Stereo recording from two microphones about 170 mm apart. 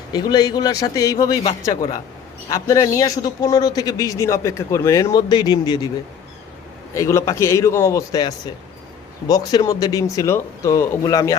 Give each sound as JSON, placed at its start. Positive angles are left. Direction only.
{"t": 0.1, "sound": "a man's voice", "side_deg": 25}
{"t": 6.9, "sound": "a man's voice", "side_deg": 15}